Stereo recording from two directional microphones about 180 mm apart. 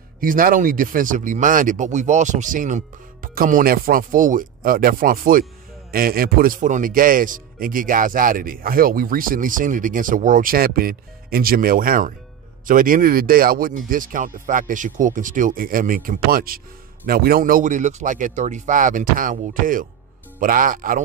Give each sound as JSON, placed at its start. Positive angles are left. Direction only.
{"t": 0.2, "sound": "speech", "side_deg": -50}